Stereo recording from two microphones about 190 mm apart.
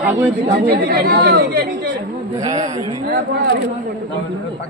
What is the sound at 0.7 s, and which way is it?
Speech, 50° right (ahead or behind).